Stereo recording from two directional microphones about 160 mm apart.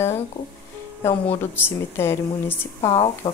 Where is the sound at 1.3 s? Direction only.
15° left (ahead or behind).